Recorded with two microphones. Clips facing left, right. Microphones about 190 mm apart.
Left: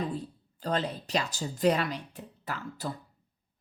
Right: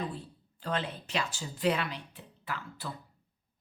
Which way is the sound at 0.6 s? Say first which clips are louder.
Left 4 dB; 40° left (ahead or behind).